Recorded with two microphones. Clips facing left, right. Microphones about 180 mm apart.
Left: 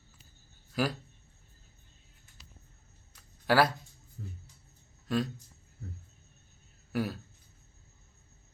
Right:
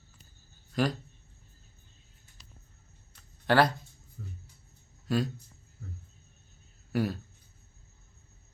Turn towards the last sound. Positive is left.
turn(degrees=0)  # may be behind; listen again after turning